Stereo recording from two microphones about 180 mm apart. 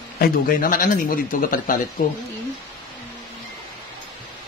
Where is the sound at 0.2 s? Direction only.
50° left (ahead or behind).